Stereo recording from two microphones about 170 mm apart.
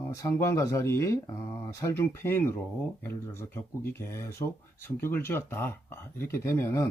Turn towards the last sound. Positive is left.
turn(degrees=15)  # may be behind; listen again after turning